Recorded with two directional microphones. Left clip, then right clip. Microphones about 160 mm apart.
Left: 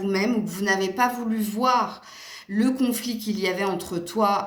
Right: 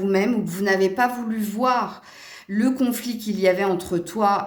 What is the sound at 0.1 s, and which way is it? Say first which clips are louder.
A woman's voice: right 1 dB; 50° right (ahead or behind).